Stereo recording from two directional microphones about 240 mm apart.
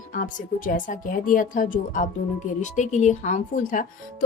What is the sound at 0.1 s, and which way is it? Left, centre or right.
A woman's voice, left.